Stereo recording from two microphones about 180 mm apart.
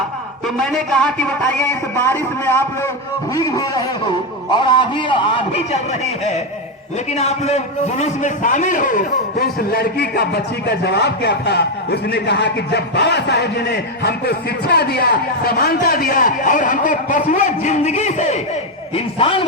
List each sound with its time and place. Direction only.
0.4 s a man's voice: centre (ahead or behind); by 5.8 s 35° left (ahead or behind)
7.1 s a man's voice: 35° left (ahead or behind)